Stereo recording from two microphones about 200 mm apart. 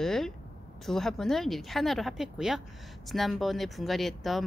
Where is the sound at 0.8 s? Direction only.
Centre (ahead or behind).